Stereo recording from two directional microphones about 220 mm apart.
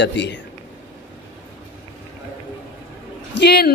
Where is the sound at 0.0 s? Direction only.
55° left (ahead or behind).